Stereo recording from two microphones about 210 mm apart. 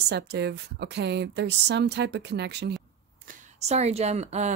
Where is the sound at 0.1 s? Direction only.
50° right (ahead or behind).